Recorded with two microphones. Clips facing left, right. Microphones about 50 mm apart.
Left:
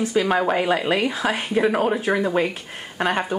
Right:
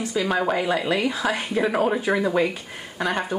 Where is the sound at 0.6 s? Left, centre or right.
Centre.